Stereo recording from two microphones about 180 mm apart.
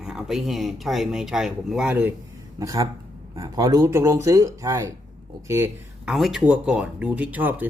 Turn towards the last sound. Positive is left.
turn(degrees=-10)  # may be behind; listen again after turning